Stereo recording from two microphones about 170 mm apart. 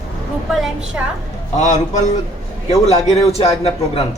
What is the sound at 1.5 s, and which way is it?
A man's voice, 45° left (ahead or behind).